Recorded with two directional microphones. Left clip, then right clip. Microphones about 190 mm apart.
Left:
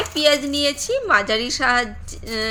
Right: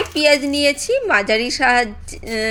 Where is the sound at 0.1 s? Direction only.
15° right (ahead or behind).